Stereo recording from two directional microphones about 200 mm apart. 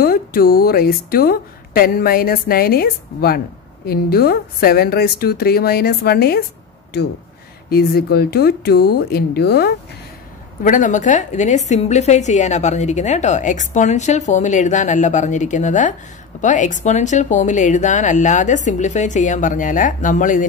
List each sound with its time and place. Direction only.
0.0 s speech: 50° left (ahead or behind)
7.7 s speech: 50° left (ahead or behind)
10.6 s a woman's voice: 40° left (ahead or behind)